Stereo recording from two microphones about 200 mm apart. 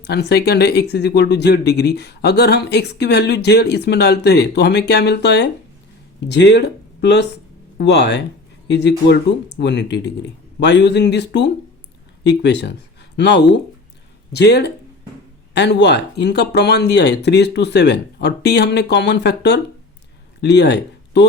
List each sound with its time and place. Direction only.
0.0 s speech: 55° left (ahead or behind)